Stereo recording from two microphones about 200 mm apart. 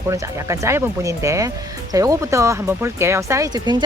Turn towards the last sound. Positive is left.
turn(degrees=-20)  # may be behind; listen again after turning